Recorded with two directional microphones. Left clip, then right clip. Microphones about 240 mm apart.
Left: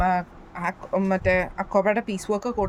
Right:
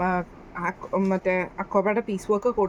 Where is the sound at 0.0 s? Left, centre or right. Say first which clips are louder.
Left 3 dB; left.